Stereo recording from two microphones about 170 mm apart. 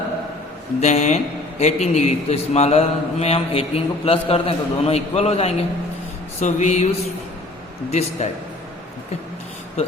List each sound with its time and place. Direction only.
0.8 s a man's voice: 45° left (ahead or behind)